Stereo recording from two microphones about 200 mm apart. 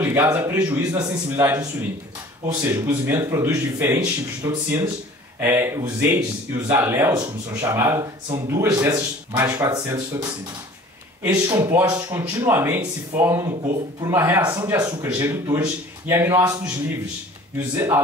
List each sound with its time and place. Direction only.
0.0 s speech: 10° right (ahead or behind)
11.4 s speech: 15° right (ahead or behind)
17.7 s speech: 15° right (ahead or behind)